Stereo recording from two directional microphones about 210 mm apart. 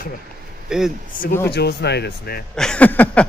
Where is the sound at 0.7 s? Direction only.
5° right (ahead or behind).